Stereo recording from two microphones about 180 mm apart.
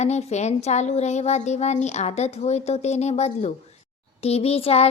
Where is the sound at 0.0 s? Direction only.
40° left (ahead or behind).